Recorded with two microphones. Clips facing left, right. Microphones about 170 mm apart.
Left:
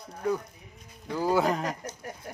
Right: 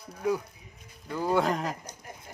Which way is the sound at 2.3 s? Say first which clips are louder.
Left 8 dB; 85° left.